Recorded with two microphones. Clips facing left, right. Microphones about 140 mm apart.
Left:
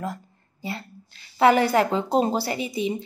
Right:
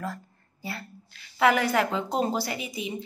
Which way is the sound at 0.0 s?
20° left (ahead or behind).